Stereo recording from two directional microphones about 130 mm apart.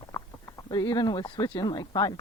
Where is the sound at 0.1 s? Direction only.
25° left (ahead or behind).